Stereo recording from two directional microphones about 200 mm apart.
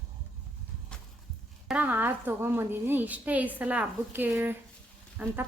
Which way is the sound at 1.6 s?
10° right (ahead or behind).